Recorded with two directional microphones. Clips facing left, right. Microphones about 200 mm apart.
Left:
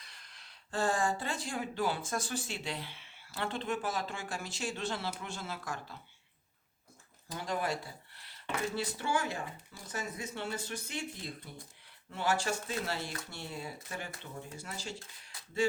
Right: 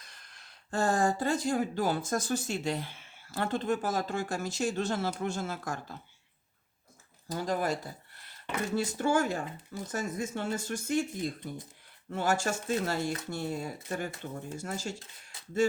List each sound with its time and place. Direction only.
0.0 s speech: 50° right (ahead or behind)
7.3 s speech: 40° right (ahead or behind)
15.3 s a sound: 25° right (ahead or behind)